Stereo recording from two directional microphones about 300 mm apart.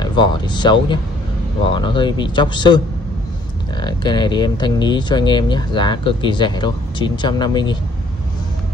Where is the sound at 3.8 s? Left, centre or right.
Centre.